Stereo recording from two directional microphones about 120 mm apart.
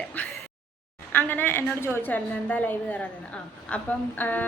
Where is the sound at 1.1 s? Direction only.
15° left (ahead or behind).